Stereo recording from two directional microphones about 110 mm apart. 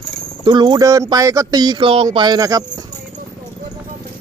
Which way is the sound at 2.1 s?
40° right (ahead or behind).